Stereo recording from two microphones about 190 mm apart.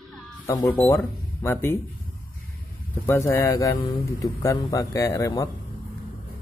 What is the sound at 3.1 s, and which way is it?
Speech, 10° left (ahead or behind).